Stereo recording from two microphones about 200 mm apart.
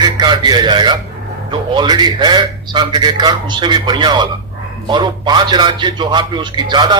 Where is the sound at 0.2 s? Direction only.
20° right (ahead or behind).